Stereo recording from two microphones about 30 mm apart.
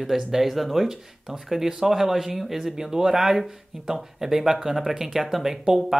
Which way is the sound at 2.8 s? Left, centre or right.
Centre.